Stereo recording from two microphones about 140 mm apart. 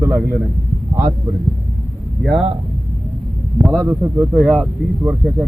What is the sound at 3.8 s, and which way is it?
Speech, 20° right (ahead or behind).